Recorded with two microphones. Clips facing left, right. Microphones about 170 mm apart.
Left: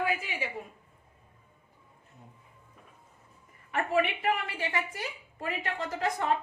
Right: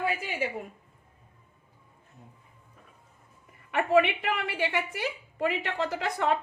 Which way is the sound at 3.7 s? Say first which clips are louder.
Right 5 dB; 70° right (ahead or behind).